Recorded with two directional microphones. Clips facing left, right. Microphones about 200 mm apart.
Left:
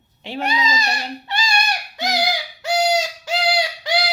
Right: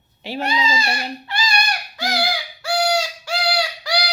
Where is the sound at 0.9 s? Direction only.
25° left (ahead or behind).